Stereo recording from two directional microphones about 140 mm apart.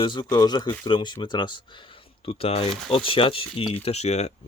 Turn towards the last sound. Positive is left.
turn(degrees=50)  # may be behind; listen again after turning